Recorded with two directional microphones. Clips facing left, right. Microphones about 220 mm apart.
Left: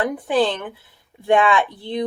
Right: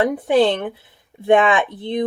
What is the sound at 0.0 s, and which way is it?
Speech, 25° right (ahead or behind).